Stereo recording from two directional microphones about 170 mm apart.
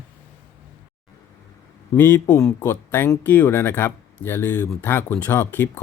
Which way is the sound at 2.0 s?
10° left (ahead or behind).